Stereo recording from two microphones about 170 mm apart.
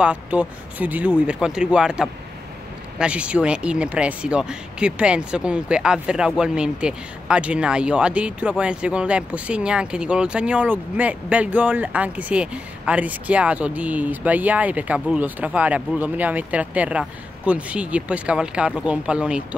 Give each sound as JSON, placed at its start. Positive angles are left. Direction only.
{"t": 0.0, "sound": "speech", "side_deg": -10}